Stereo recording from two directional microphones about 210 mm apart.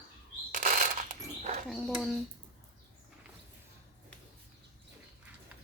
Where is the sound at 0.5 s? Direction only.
40° right (ahead or behind).